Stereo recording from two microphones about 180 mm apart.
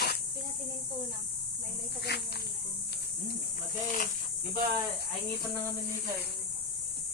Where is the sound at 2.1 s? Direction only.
65° left (ahead or behind).